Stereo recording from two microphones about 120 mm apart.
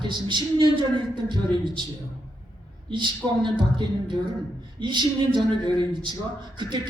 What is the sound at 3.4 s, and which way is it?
A man's voice, 40° right (ahead or behind).